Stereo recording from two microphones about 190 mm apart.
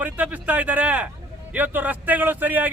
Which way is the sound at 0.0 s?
10° right (ahead or behind).